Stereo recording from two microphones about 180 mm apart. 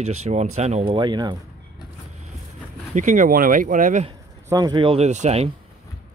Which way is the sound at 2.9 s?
45° right (ahead or behind).